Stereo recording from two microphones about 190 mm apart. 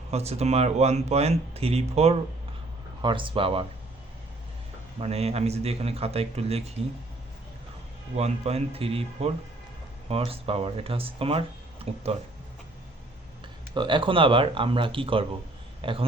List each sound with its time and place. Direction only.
0.1 s speech: 35° right (ahead or behind)
4.9 s speech: 35° right (ahead or behind)
8.1 s speech: 35° right (ahead or behind)
11.8 s a sound: 30° right (ahead or behind)
13.7 s a man's voice: 25° right (ahead or behind)